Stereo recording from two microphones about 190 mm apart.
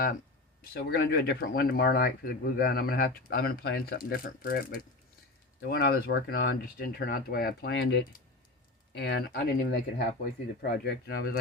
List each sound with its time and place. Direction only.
0.7 s speech: 50° left (ahead or behind)